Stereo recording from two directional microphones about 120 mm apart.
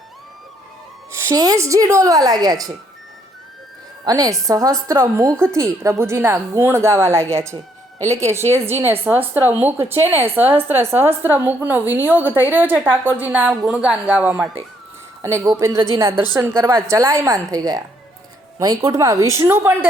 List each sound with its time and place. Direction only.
1.1 s speech: 25° right (ahead or behind)
4.0 s a woman's voice: 30° right (ahead or behind); by 14.4 s 15° right (ahead or behind)
15.2 s speech: 25° right (ahead or behind)